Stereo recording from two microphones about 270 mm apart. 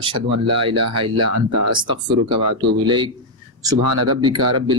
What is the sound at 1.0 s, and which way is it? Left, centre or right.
Speech, right.